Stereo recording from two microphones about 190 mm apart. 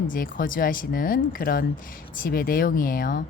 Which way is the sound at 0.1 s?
45° left (ahead or behind).